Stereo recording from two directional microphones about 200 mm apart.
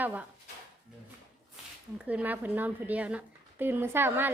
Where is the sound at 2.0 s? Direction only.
5° right (ahead or behind).